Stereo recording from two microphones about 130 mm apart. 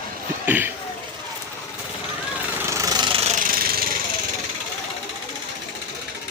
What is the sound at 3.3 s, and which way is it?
Jackhammer, 85° right.